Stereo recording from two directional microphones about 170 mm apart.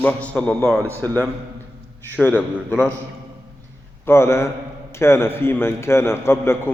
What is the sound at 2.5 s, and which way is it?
Speech, 5° right (ahead or behind).